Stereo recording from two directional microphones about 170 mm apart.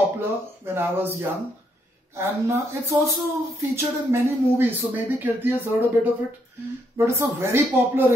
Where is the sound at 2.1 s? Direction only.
15° right (ahead or behind).